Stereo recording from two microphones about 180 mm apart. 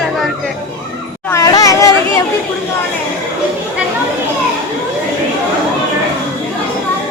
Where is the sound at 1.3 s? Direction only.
20° left (ahead or behind).